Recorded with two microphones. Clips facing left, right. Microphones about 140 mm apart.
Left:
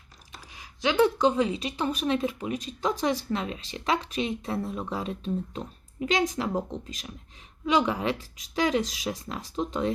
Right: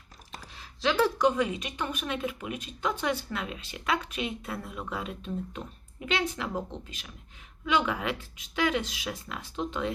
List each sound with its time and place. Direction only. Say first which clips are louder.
0.5 s a woman's voice: left 2 dB; 15° left (ahead or behind); by 9.9 s 35° left (ahead or behind)